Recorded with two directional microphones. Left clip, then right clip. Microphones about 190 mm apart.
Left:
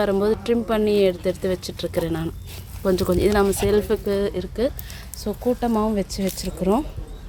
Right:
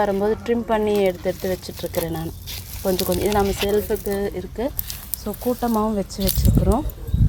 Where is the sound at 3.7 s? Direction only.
25° left (ahead or behind).